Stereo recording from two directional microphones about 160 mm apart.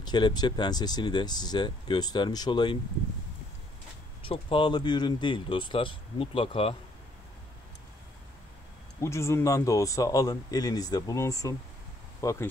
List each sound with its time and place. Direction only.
0.0 s speech: 25° left (ahead or behind)
4.2 s speech: 35° left (ahead or behind)
9.0 s speech: 15° left (ahead or behind)